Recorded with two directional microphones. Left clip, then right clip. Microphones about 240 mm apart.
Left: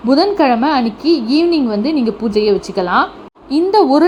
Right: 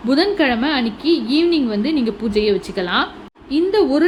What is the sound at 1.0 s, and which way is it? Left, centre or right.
Speech, left.